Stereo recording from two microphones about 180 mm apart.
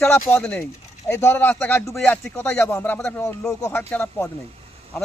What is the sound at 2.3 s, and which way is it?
Speech, 15° left (ahead or behind).